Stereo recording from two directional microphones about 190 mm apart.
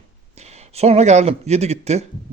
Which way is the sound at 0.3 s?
35° right (ahead or behind).